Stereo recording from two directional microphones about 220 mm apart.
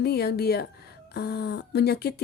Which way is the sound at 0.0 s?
45° left (ahead or behind).